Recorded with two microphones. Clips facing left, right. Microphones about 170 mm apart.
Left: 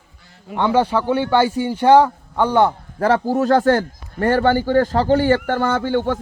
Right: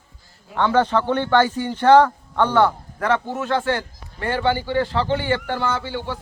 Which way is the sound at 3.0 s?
35° left (ahead or behind).